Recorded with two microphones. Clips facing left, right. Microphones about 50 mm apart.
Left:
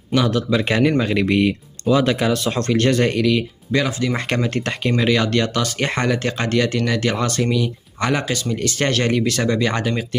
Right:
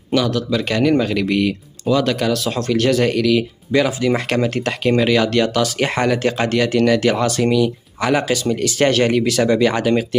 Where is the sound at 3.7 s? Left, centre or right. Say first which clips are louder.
Right 4 dB; centre.